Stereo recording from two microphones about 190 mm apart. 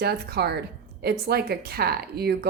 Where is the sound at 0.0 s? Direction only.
60° right (ahead or behind).